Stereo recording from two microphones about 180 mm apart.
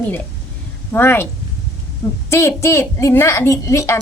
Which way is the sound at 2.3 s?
15° left (ahead or behind).